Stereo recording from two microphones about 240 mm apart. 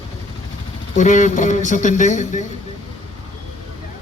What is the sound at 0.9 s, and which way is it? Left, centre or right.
A man's voice, left.